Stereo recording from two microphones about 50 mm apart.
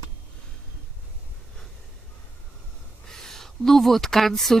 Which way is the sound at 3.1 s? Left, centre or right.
Centre.